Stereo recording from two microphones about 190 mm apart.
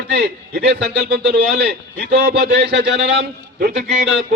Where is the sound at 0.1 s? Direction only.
65° right (ahead or behind).